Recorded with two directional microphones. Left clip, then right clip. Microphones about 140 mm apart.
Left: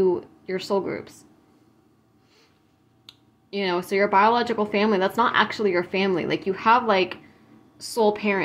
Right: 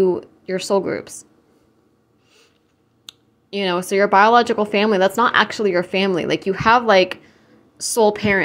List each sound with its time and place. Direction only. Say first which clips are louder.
0.0 s speech: right 4 dB; 40° right (ahead or behind)
3.1 s speech: right 5 dB; 45° right (ahead or behind)